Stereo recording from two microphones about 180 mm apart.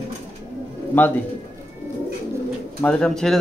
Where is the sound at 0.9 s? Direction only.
10° left (ahead or behind).